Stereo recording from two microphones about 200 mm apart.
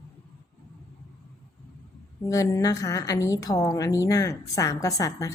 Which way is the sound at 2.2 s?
15° left (ahead or behind).